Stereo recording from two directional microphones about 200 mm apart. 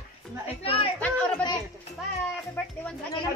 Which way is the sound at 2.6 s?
10° left (ahead or behind).